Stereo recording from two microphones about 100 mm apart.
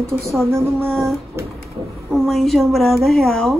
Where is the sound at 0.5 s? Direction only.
25° right (ahead or behind).